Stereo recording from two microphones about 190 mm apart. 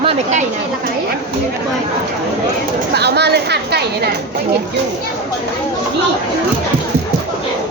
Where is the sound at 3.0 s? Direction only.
60° right (ahead or behind).